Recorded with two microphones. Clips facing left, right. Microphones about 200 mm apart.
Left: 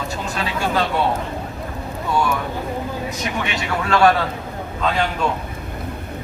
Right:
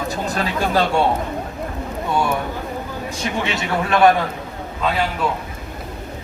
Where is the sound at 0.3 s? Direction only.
35° right (ahead or behind).